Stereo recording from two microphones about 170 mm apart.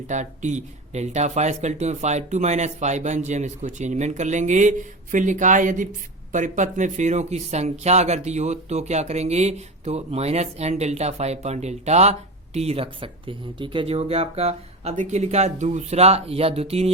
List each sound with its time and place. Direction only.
0.1 s speech: 45° right (ahead or behind)